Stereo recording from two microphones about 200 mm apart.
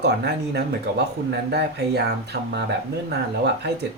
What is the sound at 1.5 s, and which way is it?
Speech, 55° right (ahead or behind).